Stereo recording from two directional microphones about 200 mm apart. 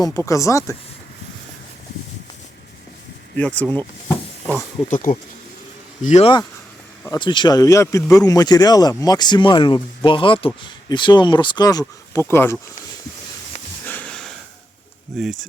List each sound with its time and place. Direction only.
0.0 s speech: 15° left (ahead or behind)
3.3 s speech: 5° left (ahead or behind)
4.4 s a sound: 5° left (ahead or behind)
4.9 s speech: 40° left (ahead or behind)
7.0 s speech: 20° left (ahead or behind)
13.8 s sniff: 5° left (ahead or behind)
15.2 s speech: centre (ahead or behind)